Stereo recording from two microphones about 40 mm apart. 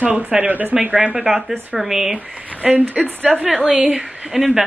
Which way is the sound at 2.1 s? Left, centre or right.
Right.